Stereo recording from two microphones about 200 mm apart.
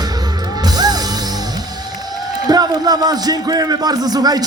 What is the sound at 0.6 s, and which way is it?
Music, 20° right (ahead or behind).